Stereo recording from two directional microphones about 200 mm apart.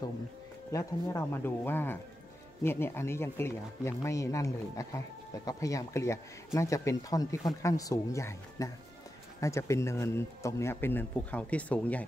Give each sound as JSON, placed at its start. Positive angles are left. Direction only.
{"t": 0.7, "sound": "speech", "side_deg": 15}